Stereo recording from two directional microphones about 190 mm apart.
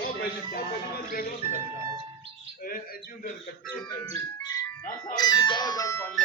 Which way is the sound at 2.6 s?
50° left (ahead or behind).